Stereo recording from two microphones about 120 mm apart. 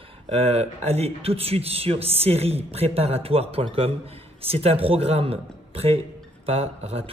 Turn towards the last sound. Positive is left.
turn(degrees=-60)  # may be behind; listen again after turning